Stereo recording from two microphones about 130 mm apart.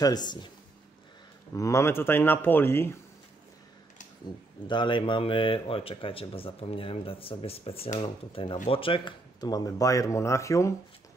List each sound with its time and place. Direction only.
0.0 s speech: 30° left (ahead or behind)
1.5 s speech: 20° left (ahead or behind)
4.6 s speech: 40° left (ahead or behind)